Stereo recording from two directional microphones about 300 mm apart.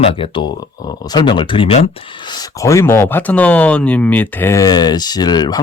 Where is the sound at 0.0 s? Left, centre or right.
Centre.